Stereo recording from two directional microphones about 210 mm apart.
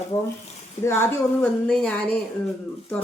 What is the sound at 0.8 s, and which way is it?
Speech, 30° left (ahead or behind).